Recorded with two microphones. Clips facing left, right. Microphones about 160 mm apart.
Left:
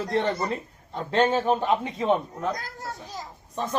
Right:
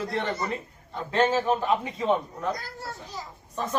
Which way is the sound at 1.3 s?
30° left (ahead or behind).